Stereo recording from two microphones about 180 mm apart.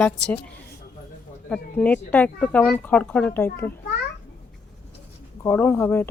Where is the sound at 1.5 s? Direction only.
5° left (ahead or behind).